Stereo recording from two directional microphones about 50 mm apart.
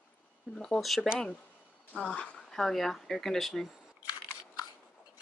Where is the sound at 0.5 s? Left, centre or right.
Centre.